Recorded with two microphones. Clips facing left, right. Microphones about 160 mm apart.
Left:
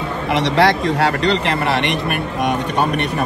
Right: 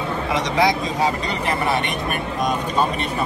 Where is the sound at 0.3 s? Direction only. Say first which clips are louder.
Left 5 dB; 70° left (ahead or behind).